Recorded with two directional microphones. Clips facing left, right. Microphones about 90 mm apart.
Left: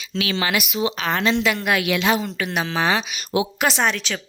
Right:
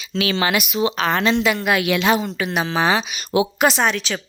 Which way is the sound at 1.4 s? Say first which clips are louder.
Right 2 dB; 15° right (ahead or behind).